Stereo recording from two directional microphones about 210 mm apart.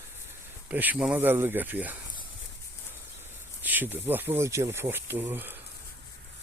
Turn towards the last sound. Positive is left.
turn(degrees=-10)  # may be behind; listen again after turning